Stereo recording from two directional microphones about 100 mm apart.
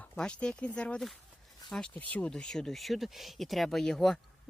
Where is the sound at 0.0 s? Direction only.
15° left (ahead or behind).